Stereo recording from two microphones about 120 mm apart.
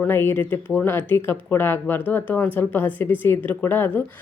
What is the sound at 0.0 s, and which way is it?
Speech, 20° left (ahead or behind).